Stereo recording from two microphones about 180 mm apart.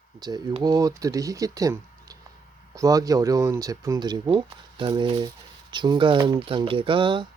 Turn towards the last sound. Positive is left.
turn(degrees=-25)  # may be behind; listen again after turning